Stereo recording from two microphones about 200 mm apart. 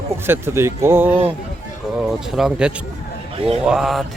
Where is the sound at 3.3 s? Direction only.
30° right (ahead or behind).